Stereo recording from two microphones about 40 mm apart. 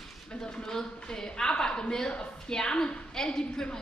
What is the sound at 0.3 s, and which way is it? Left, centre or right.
A woman's voice, centre.